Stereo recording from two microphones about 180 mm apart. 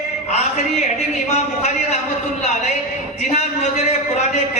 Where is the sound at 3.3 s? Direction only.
40° left (ahead or behind).